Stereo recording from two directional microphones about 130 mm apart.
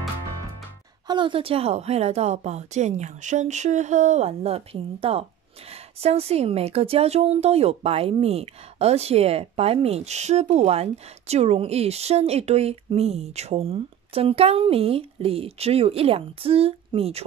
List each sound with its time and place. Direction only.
1.0 s a woman's voice: 35° right (ahead or behind)